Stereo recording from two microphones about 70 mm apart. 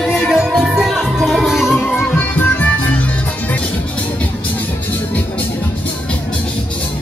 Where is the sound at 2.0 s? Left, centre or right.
Left.